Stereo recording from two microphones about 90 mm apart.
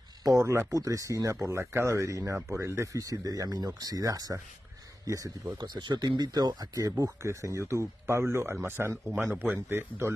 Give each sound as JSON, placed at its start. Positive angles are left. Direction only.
{"t": 0.2, "sound": "a man's voice", "side_deg": -40}